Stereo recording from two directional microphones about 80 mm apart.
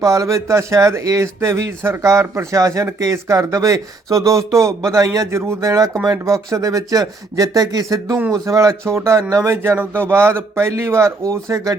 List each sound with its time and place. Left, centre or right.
0.0 s speech: right